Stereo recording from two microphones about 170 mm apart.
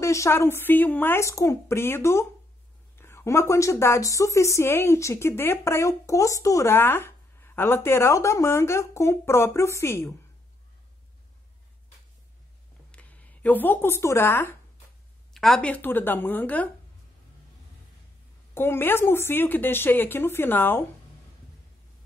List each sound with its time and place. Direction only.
0.0 s a woman's voice: 15° left (ahead or behind)
12.9 s speech: 10° left (ahead or behind)
15.3 s a woman's voice: centre (ahead or behind)
18.5 s a woman's voice: 15° left (ahead or behind)